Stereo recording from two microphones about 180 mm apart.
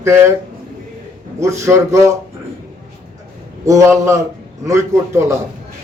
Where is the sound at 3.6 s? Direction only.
15° right (ahead or behind).